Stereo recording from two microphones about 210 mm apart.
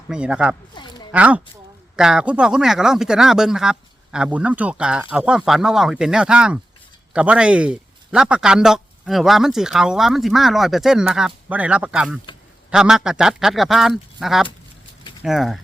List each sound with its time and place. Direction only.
0.1 s speech: 5° right (ahead or behind)
0.7 s speech: 20° left (ahead or behind)
1.1 s speech: 5° right (ahead or behind)